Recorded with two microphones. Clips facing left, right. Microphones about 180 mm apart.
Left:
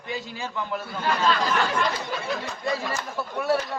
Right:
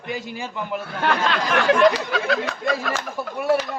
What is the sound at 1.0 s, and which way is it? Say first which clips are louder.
Speech: right 1 dB; 75° right (ahead or behind).